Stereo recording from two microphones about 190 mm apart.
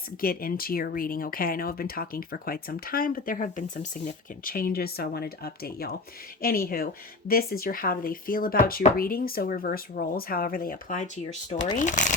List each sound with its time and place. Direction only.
0.2 s speech: 50° left (ahead or behind)